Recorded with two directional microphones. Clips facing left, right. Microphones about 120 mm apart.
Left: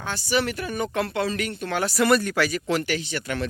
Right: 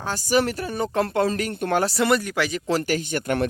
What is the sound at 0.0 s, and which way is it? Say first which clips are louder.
Speech: right 3 dB; 40° right (ahead or behind).